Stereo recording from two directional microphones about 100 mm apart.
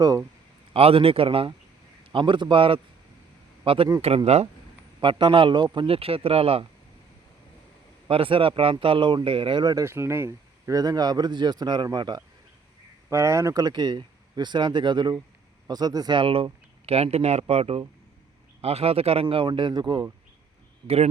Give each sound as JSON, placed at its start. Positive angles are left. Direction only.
{"t": 0.7, "sound": "a man's voice", "side_deg": -70}
{"t": 2.1, "sound": "speech", "side_deg": -55}
{"t": 4.1, "sound": "speech", "side_deg": -90}
{"t": 4.9, "sound": "speech", "side_deg": -55}
{"t": 8.0, "sound": "speech", "side_deg": -65}
{"t": 9.8, "sound": "speech", "side_deg": -25}
{"t": 13.1, "sound": "speech", "side_deg": -30}
{"t": 16.1, "sound": "speech", "side_deg": -65}